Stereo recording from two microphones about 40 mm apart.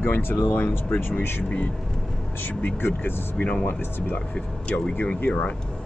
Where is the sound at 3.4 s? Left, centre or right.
Left.